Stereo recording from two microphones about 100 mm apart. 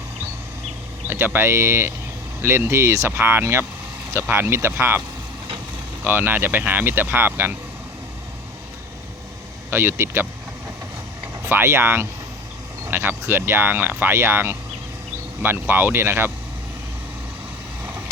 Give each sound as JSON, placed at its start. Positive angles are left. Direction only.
{"t": 1.0, "sound": "speech", "side_deg": -20}
{"t": 6.1, "sound": "speech", "side_deg": -20}
{"t": 9.6, "sound": "speech", "side_deg": -25}
{"t": 11.4, "sound": "speech", "side_deg": -25}